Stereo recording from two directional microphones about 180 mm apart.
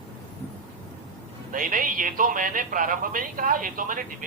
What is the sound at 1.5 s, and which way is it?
Speech, 50° right (ahead or behind).